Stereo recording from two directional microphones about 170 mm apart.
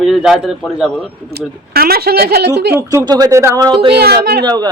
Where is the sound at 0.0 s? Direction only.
Centre (ahead or behind).